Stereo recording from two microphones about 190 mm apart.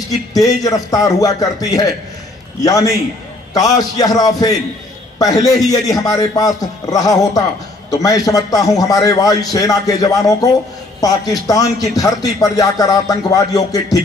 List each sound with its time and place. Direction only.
0.3 s a man's voice: 20° left (ahead or behind)